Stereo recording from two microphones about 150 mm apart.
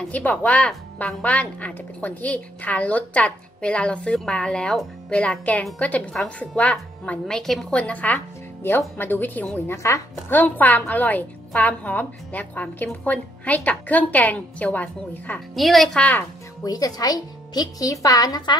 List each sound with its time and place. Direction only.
0.1 s a woman's voice: 10° left (ahead or behind)
16.6 s speech: 25° left (ahead or behind)